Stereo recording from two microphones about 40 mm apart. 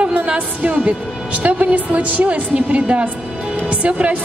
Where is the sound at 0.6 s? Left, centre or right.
Right.